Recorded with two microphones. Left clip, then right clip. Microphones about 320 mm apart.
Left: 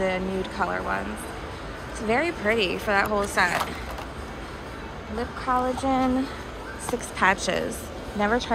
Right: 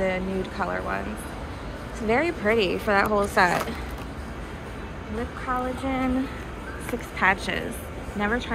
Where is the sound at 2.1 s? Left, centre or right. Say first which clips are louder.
Right 1 dB; centre.